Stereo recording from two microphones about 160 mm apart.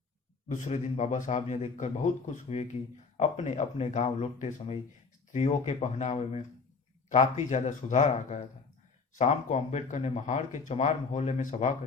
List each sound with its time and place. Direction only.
0.4 s speech: 45° left (ahead or behind)